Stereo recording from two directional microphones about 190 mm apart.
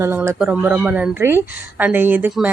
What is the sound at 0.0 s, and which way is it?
A woman's voice, 15° right (ahead or behind).